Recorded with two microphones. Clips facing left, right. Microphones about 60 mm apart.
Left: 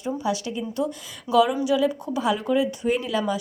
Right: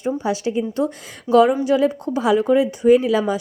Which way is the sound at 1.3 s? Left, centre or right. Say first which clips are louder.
Right 5 dB; right.